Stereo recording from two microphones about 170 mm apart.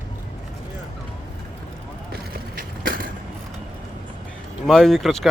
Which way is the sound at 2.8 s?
55° right (ahead or behind).